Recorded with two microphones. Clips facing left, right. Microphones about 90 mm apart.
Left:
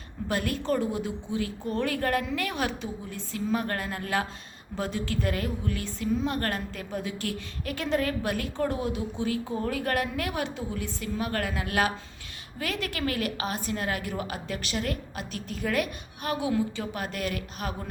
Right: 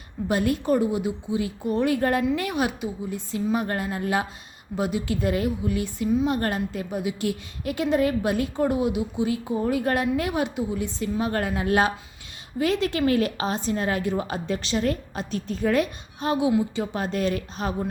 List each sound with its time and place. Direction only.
0.3 s a woman's voice: 20° right (ahead or behind)